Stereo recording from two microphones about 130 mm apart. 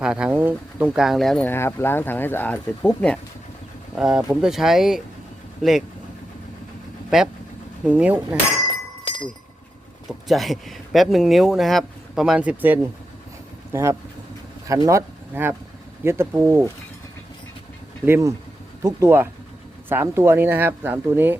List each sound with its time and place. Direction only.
0.0 s speech: 5° right (ahead or behind)
0.9 s speech: centre (ahead or behind)
1.5 s speech: 20° left (ahead or behind)
3.9 s speech: 5° right (ahead or behind)
7.1 s speech: 5° right (ahead or behind)
9.1 s chink: 40° left (ahead or behind)
10.1 s speech: centre (ahead or behind)
14.7 s speech: 25° right (ahead or behind)
18.0 s speech: 20° right (ahead or behind)